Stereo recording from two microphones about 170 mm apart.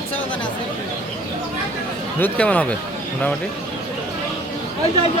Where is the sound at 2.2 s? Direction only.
10° left (ahead or behind).